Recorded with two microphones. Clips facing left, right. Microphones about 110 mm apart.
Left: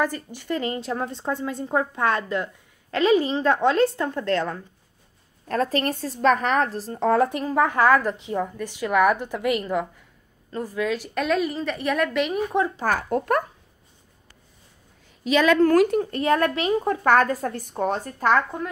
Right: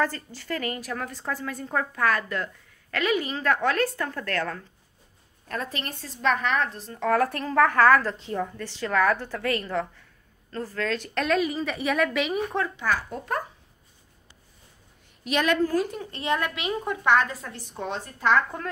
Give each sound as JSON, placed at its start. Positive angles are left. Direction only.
{"t": 0.0, "sound": "a woman's voice", "side_deg": 15}
{"t": 5.5, "sound": "a woman's voice", "side_deg": 40}
{"t": 7.2, "sound": "a woman's voice", "side_deg": 15}
{"t": 12.7, "sound": "a woman's voice", "side_deg": 50}
{"t": 15.6, "sound": "a woman's voice", "side_deg": 70}
{"t": 16.0, "sound": "a woman's voice", "side_deg": 45}